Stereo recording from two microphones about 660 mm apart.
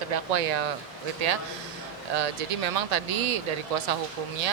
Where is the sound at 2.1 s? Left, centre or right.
Right.